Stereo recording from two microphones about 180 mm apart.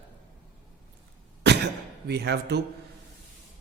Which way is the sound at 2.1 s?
65° right (ahead or behind).